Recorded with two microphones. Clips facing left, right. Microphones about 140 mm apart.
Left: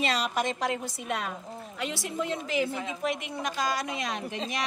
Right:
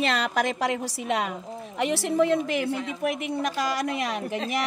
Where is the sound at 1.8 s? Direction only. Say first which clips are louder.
Right 10 dB; 65° right (ahead or behind).